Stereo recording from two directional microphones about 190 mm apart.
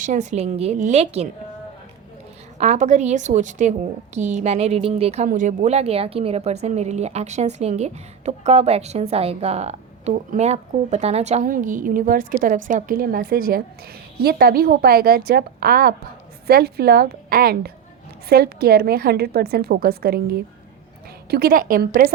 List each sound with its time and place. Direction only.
0.0 s a woman's voice: 40° right (ahead or behind)
2.6 s a woman's voice: 40° right (ahead or behind)